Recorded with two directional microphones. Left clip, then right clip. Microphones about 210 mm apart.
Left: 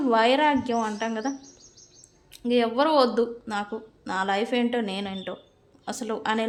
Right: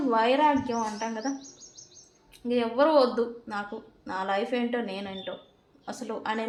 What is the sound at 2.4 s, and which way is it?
A woman's voice, 40° left (ahead or behind).